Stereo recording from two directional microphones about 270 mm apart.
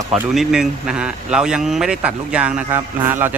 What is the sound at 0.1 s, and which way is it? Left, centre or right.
Speech, centre.